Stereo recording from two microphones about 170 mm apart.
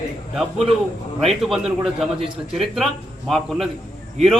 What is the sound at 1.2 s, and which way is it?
A man's voice, centre (ahead or behind).